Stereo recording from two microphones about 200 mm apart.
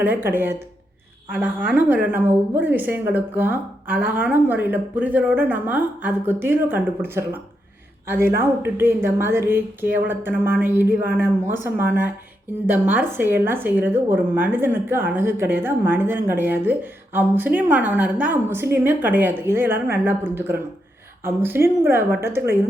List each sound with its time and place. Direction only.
0.0 s a woman's voice: 10° right (ahead or behind)